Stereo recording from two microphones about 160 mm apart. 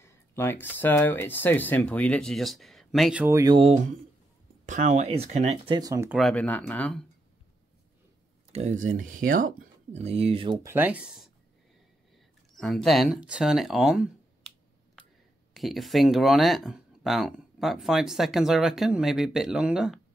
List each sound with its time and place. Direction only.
0.0 s a sound: 15° left (ahead or behind)
0.7 s speech: 10° left (ahead or behind); by 3.3 s 5° right (ahead or behind)
3.3 s speech: 25° right (ahead or behind)
4.6 s speech: 50° right (ahead or behind)
5.7 s speech: 25° right (ahead or behind)
6.0 s speech: centre (ahead or behind)
8.5 s speech: 45° right (ahead or behind)
10.0 s speech: 40° right (ahead or behind)
10.6 s speech: 15° right (ahead or behind)
12.5 s speech: centre (ahead or behind)
15.5 s speech: centre (ahead or behind)